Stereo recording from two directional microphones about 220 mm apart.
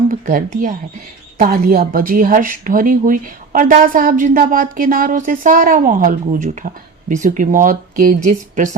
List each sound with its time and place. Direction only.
0.1 s a woman's voice: 35° right (ahead or behind)